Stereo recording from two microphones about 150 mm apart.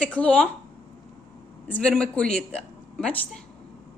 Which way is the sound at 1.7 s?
5° left (ahead or behind).